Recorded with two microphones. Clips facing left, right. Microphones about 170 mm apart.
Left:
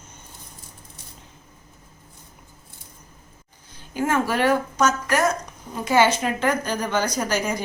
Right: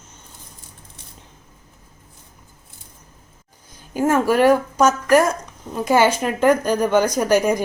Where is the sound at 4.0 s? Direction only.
45° right (ahead or behind).